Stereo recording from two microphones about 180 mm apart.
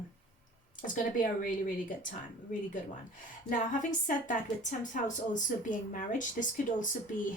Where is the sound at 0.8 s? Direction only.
50° left (ahead or behind).